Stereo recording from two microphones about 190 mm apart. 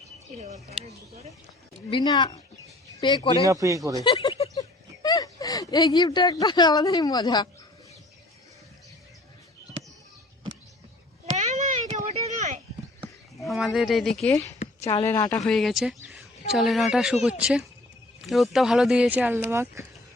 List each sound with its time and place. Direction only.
0.9 s speech: 35° right (ahead or behind)
1.9 s speech: 25° left (ahead or behind)
3.4 s speech: 15° right (ahead or behind)
4.0 s speech: 25° left (ahead or behind)
11.3 s a sound: 35° right (ahead or behind)
13.4 s a sound: centre (ahead or behind)
13.7 s speech: centre (ahead or behind)
14.6 s a sound: 30° left (ahead or behind)
15.0 s speech: 15° left (ahead or behind)
15.4 s speech: centre (ahead or behind)